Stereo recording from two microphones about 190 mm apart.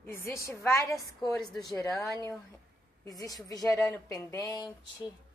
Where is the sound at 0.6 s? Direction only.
15° left (ahead or behind).